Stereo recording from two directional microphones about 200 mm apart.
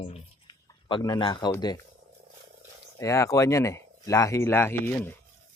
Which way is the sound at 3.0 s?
15° left (ahead or behind).